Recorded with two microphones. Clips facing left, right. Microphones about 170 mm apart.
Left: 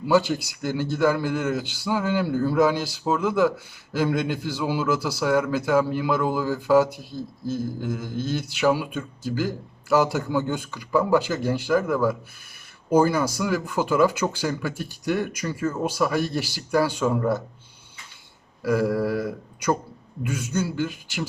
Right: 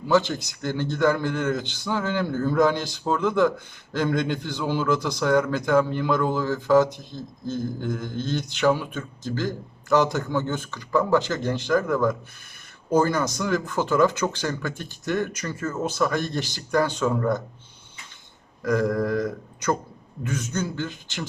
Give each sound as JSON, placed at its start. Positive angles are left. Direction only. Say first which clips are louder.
{"t": 0.1, "sound": "a man's voice", "louder": "left 1 dB", "side_deg": 10}
{"t": 18.6, "sound": "a man's voice", "louder": "left 1 dB", "side_deg": 10}